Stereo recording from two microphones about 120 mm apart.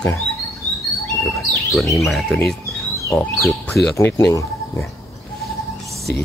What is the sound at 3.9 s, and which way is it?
Speech, 25° left (ahead or behind).